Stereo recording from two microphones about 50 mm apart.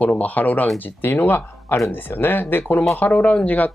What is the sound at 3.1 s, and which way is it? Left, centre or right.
Speech, left.